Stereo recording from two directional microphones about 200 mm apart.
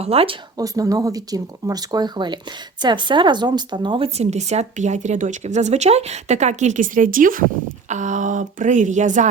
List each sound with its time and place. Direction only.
0.0 s speech: 30° right (ahead or behind)
0.6 s speech: 15° right (ahead or behind); by 9.3 s 40° right (ahead or behind)